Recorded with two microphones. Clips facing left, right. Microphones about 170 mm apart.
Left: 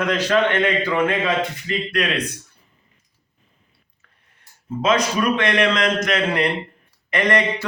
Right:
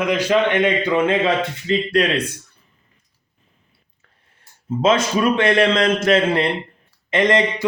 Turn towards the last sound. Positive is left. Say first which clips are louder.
# right 3 dB
turn(degrees=-20)  # may be behind; listen again after turning